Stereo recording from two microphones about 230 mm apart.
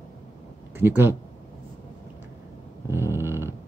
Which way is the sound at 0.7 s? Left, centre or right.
Centre.